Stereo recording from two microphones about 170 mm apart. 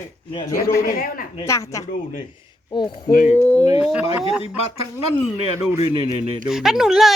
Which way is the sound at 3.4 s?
10° left (ahead or behind).